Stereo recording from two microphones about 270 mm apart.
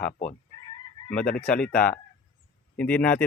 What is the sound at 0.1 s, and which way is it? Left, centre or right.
Speech, left.